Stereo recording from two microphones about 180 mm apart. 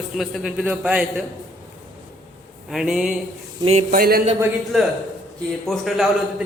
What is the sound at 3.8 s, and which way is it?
Speech, 55° right (ahead or behind).